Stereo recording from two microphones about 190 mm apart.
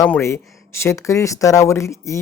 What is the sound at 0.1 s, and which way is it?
Speech, 15° left (ahead or behind).